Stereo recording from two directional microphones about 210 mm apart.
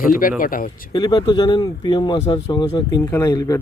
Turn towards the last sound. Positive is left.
turn(degrees=15)  # may be behind; listen again after turning